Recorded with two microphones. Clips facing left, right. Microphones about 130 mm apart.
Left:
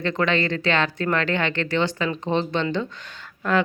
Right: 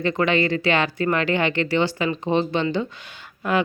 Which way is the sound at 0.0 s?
10° right (ahead or behind).